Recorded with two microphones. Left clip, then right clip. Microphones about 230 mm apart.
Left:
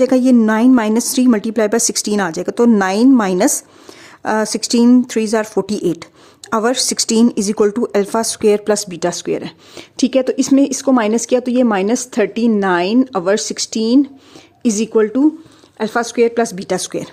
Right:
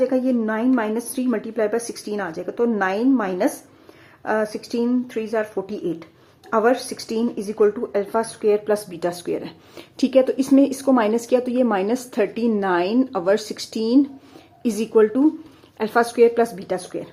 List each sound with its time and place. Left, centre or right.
0.0 s a woman's voice: left